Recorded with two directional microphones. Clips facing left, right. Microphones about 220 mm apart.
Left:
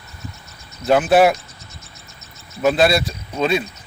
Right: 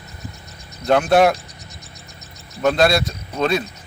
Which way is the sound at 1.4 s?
15° right (ahead or behind).